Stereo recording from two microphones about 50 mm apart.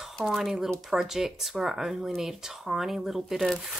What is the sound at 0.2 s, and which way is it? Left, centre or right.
Speech, centre.